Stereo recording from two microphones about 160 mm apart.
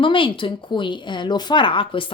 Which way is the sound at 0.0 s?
30° left (ahead or behind).